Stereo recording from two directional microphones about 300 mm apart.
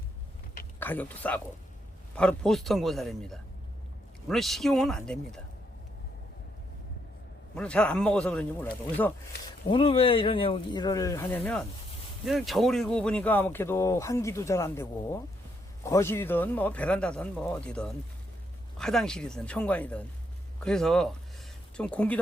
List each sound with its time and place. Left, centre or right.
0.8 s speech: centre
7.5 s speech: centre
9.6 s speech: centre